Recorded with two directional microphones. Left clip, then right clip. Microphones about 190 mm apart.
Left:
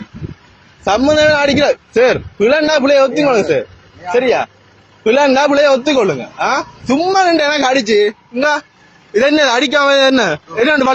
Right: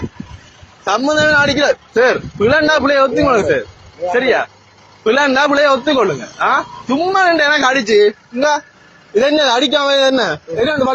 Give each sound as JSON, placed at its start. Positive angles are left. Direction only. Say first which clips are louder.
{"t": 0.9, "sound": "a man's voice", "louder": "left 2 dB", "side_deg": 35}